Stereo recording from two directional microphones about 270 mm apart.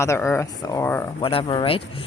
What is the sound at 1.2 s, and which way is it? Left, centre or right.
Speech, centre.